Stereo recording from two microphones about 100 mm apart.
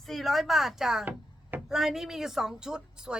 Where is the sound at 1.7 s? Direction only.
5° right (ahead or behind).